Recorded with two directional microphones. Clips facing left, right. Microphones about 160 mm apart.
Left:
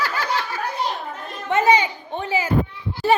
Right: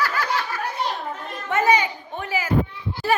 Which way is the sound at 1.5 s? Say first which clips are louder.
Left 2 dB; 25° left (ahead or behind).